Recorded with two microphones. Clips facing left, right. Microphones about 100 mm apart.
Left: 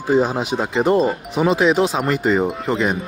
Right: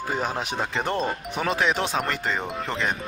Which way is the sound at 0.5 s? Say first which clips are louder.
Left 9 dB; 5° left (ahead or behind).